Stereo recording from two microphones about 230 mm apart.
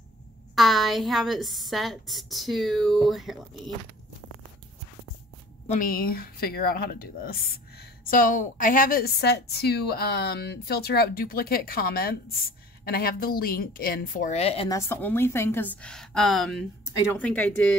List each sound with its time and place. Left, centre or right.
0.6 s speech: centre
5.7 s speech: left
14.7 s a woman's voice: centre